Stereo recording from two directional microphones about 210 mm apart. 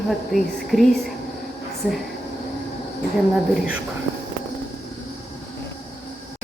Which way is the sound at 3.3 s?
5° right (ahead or behind).